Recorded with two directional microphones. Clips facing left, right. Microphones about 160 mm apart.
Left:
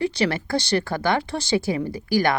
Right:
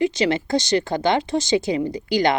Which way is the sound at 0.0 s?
15° right (ahead or behind).